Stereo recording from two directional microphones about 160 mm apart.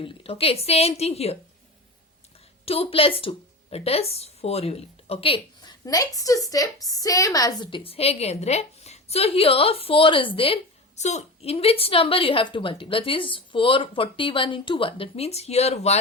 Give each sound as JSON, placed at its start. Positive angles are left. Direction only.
{"t": 0.0, "sound": "a woman's voice", "side_deg": 35}
{"t": 2.6, "sound": "a woman's voice", "side_deg": 35}
{"t": 5.8, "sound": "a woman's voice", "side_deg": 20}